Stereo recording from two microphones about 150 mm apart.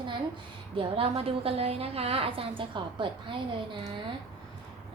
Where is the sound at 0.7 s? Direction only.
40° right (ahead or behind).